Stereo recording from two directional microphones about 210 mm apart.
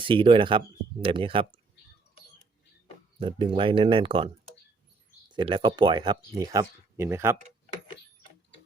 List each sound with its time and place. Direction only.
0.0 s speech: 25° right (ahead or behind)
3.2 s speech: 25° right (ahead or behind)
5.3 s speech: 20° right (ahead or behind)